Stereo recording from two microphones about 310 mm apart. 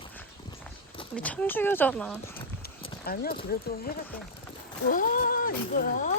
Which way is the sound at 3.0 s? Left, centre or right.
Left.